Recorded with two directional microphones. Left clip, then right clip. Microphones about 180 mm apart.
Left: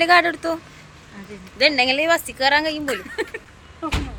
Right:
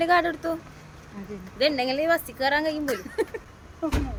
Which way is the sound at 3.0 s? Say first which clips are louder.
Left 1 dB; 5° right (ahead or behind).